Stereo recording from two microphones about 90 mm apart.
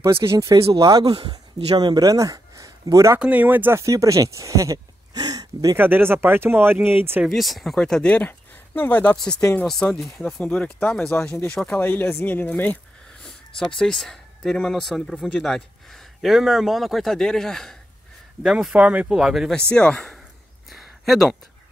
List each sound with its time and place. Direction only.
0.0 s speech: 30° right (ahead or behind)
3.2 s speech: 15° right (ahead or behind)
3.8 s speech: 35° right (ahead or behind)
5.8 s speech: 25° right (ahead or behind)
7.2 s speech: centre (ahead or behind)
11.8 s speech: 20° left (ahead or behind)
13.6 s speech: 10° left (ahead or behind)
16.2 s speech: centre (ahead or behind)
18.4 s speech: 10° right (ahead or behind)
19.5 s speech: 10° left (ahead or behind)
20.7 s a sound: centre (ahead or behind)